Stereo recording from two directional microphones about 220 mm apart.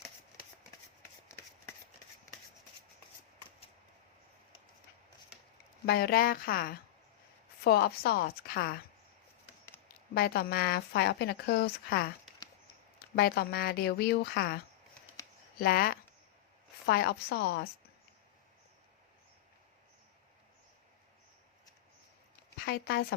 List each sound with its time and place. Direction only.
5.8 s a woman's voice: 45° left (ahead or behind)
10.2 s a woman's voice: 45° left (ahead or behind)
13.1 s a woman's voice: 45° left (ahead or behind)
15.2 s a sound: 15° left (ahead or behind)
15.5 s a woman's voice: 40° left (ahead or behind)
22.5 s a woman's voice: 45° left (ahead or behind)